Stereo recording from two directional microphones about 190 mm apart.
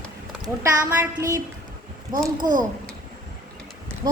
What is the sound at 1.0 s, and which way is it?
Child singing, 15° right (ahead or behind).